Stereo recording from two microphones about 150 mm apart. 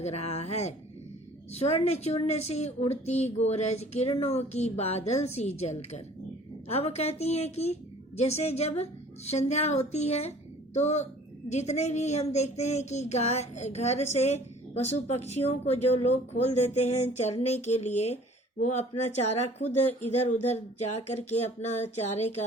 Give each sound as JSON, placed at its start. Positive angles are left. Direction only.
{"t": 0.0, "sound": "speech", "side_deg": 45}